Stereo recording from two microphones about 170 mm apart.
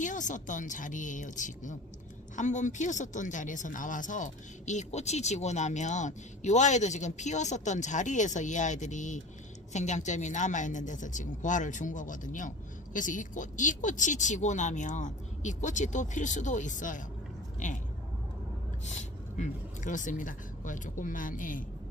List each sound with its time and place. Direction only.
0.0 s speech: 45° left (ahead or behind)
18.9 s speech: 45° left (ahead or behind)